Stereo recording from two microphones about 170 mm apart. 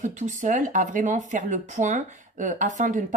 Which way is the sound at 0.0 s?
45° right (ahead or behind).